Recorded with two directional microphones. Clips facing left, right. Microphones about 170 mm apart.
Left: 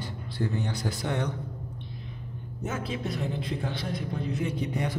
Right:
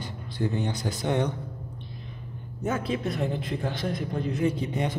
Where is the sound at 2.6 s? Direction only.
55° right (ahead or behind).